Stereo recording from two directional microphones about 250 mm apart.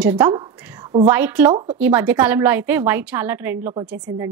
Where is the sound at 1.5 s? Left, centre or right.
Centre.